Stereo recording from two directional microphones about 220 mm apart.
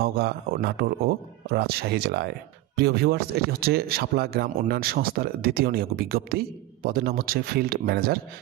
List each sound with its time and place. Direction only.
0.0 s speech: 45° right (ahead or behind)